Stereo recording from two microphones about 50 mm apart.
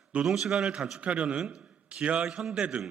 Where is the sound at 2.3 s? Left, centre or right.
Centre.